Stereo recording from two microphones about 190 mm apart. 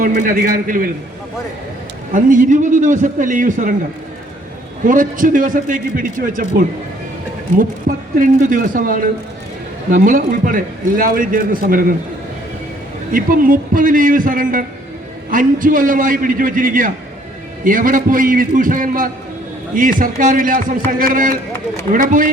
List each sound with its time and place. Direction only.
0.0 s a man's voice: 45° right (ahead or behind)
2.1 s a man's voice: 45° right (ahead or behind)
4.9 s a man's voice: 45° right (ahead or behind)
7.9 s a man's voice: 45° right (ahead or behind)
13.1 s a man's voice: 50° right (ahead or behind)